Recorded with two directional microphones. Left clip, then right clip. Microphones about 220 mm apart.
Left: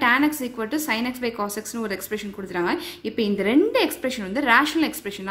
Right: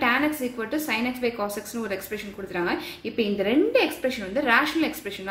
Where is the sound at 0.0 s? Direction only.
30° left (ahead or behind).